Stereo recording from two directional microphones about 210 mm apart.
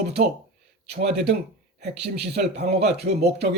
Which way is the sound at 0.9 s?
50° right (ahead or behind).